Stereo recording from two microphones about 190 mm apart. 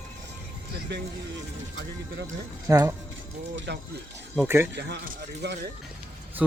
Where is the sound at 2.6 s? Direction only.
20° right (ahead or behind).